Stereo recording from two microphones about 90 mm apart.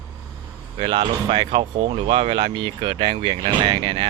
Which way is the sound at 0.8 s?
65° right (ahead or behind).